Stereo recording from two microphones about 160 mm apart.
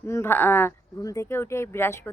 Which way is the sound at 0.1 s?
15° left (ahead or behind).